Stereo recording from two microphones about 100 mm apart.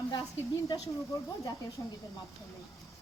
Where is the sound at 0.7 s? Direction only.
45° left (ahead or behind).